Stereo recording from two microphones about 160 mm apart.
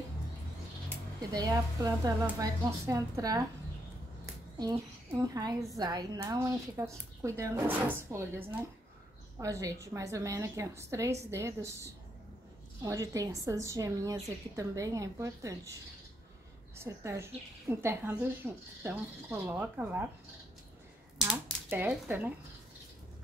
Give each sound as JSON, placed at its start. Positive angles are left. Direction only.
{"t": 1.3, "sound": "a woman's voice", "side_deg": -25}
{"t": 4.6, "sound": "a woman's voice", "side_deg": -20}
{"t": 16.7, "sound": "speech", "side_deg": -15}
{"t": 21.3, "sound": "speech", "side_deg": -10}